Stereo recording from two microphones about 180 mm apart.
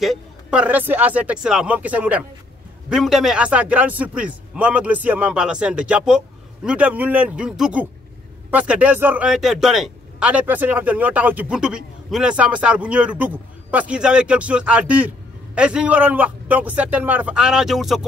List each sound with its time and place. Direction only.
0.0 s speech: 5° right (ahead or behind)